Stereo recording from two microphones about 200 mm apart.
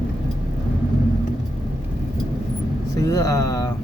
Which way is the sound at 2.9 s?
15° left (ahead or behind).